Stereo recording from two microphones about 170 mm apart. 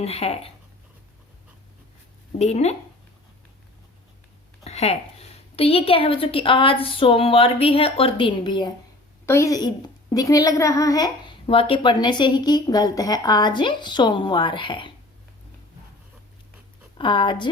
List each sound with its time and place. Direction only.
0.0 s a woman's voice: 35° left (ahead or behind)
2.4 s a woman's voice: 40° left (ahead or behind)
4.6 s a sound: 40° left (ahead or behind)
5.5 s a woman's voice: 35° left (ahead or behind)
9.2 s a woman's voice: 15° left (ahead or behind)
17.0 s a woman's voice: 30° left (ahead or behind)